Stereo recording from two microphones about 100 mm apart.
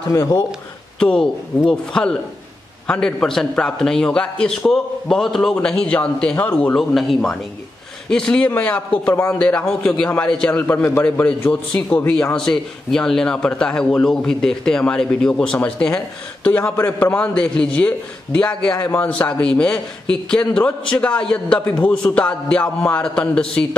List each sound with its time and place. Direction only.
0.1 s speech: 35° left (ahead or behind)
0.9 s a man's voice: 10° left (ahead or behind)
9.0 s speech: 30° left (ahead or behind)
9.3 s a man's voice: 10° left (ahead or behind)
10.7 s a man's voice: 25° left (ahead or behind)
11.1 s a man's voice: 15° left (ahead or behind)
16.7 s a man's voice: 20° left (ahead or behind)